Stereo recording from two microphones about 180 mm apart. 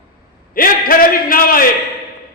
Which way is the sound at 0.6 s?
50° left (ahead or behind).